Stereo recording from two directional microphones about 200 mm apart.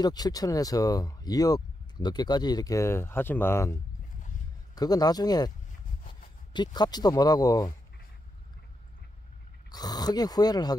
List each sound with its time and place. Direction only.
0.0 s speech: 20° left (ahead or behind)
4.7 s speech: 20° left (ahead or behind)
6.5 s speech: 20° left (ahead or behind)
9.7 s speech: 20° left (ahead or behind)